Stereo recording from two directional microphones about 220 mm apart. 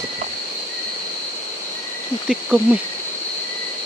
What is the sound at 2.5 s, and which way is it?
Speech, 5° right (ahead or behind).